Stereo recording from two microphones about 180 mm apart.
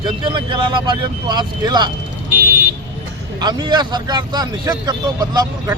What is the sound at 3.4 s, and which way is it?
Speech, 25° right (ahead or behind).